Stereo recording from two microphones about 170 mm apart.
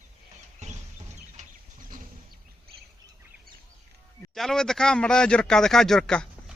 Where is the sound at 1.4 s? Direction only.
50° right (ahead or behind).